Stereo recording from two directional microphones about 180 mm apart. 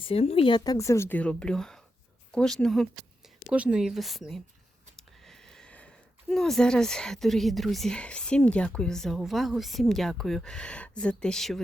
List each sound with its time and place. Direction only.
0.0 s speech: 35° left (ahead or behind); by 11.6 s centre (ahead or behind)